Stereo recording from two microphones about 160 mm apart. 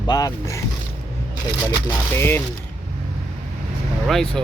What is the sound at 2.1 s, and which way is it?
Speech, 15° left (ahead or behind).